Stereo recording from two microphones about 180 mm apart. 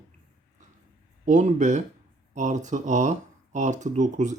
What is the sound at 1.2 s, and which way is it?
Speech, 45° right (ahead or behind).